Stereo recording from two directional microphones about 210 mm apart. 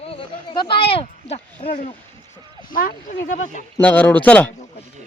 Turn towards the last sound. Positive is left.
turn(degrees=5)  # may be behind; listen again after turning